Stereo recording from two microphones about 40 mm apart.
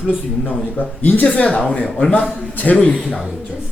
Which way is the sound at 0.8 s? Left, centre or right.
Left.